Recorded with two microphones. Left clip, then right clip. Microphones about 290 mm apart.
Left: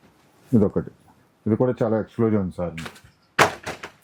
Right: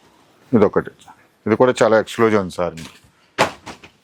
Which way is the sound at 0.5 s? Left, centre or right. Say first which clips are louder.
Right 7 dB; centre.